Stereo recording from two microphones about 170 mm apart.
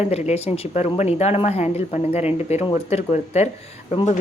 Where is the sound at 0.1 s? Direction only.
40° left (ahead or behind).